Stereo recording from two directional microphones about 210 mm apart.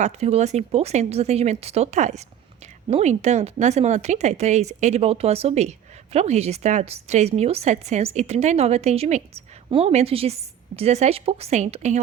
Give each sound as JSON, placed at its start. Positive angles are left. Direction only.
{"t": 0.0, "sound": "a woman's voice", "side_deg": -30}